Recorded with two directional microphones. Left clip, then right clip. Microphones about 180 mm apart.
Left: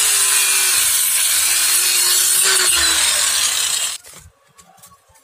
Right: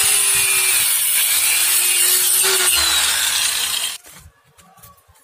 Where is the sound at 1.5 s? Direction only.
Centre (ahead or behind); by 4.0 s 20° left (ahead or behind).